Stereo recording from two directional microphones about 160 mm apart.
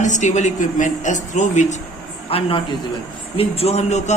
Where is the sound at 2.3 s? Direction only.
35° left (ahead or behind).